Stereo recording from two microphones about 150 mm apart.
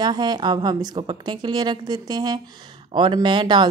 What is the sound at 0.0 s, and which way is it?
A woman's voice, 30° right (ahead or behind).